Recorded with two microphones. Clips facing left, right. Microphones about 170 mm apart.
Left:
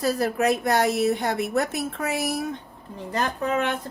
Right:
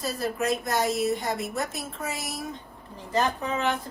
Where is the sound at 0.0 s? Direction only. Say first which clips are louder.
Left 6 dB; 65° left (ahead or behind).